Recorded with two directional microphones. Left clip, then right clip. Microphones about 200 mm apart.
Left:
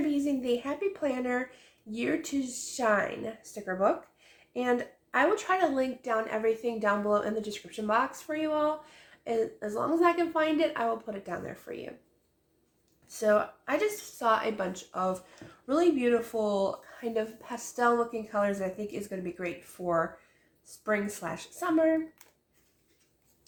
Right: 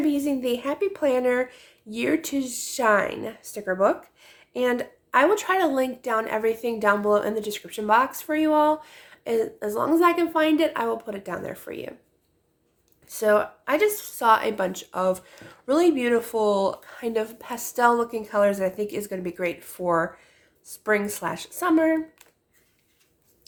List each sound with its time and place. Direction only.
0.0 s speech: 50° right (ahead or behind)
13.1 s speech: 45° right (ahead or behind)